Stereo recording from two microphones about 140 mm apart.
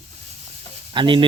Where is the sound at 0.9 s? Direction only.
35° right (ahead or behind).